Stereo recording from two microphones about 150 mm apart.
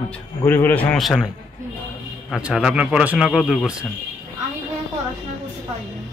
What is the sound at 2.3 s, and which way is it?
Speech, centre (ahead or behind).